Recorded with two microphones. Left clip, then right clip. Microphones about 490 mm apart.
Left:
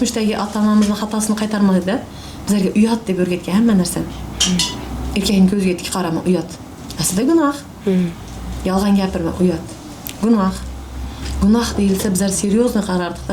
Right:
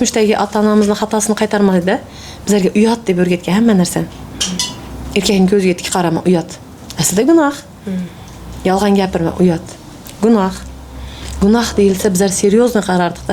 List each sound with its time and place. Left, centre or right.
0.0 s a woman's voice: right
5.1 s a woman's voice: right
8.6 s a woman's voice: right